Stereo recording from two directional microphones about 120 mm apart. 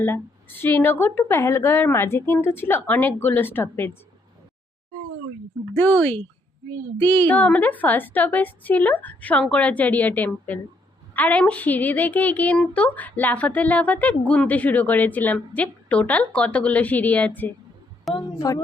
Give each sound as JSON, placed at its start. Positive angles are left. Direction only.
{"t": 0.0, "sound": "a woman's voice", "side_deg": 20}
{"t": 5.7, "sound": "a woman's voice", "side_deg": 15}
{"t": 18.3, "sound": "a woman's voice", "side_deg": 25}